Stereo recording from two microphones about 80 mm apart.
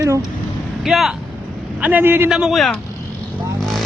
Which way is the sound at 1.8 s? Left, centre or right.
Right.